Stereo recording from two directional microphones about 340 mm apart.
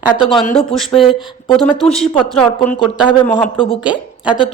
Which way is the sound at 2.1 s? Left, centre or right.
Centre.